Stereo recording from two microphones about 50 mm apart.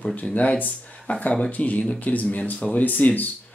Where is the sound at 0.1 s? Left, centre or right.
Left.